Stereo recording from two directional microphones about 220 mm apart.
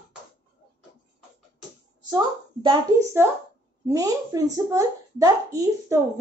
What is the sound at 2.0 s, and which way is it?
Speech, 20° right (ahead or behind).